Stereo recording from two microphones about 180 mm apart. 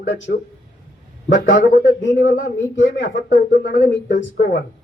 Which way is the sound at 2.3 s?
80° left.